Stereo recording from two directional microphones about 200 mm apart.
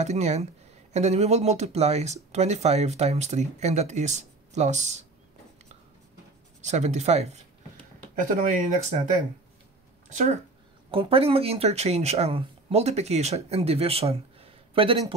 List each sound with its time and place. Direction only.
0.0 s speech: 35° right (ahead or behind)
6.6 s speech: 35° right (ahead or behind)
8.4 s speech: 40° right (ahead or behind)
10.9 s speech: 25° right (ahead or behind)